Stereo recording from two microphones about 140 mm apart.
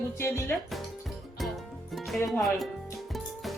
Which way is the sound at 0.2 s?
20° left (ahead or behind).